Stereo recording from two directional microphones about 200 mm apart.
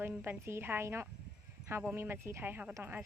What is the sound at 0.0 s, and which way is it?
A woman's voice, 10° right (ahead or behind).